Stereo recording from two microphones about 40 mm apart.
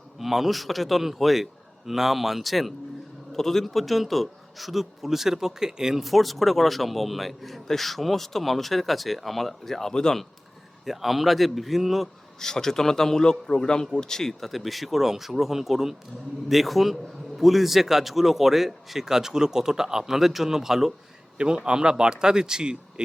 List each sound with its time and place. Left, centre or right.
0.2 s a man's voice: centre
6.0 s a man's voice: centre
9.9 s a man's voice: centre
10.8 s a man's voice: centre
12.4 s a man's voice: centre
21.3 s speech: right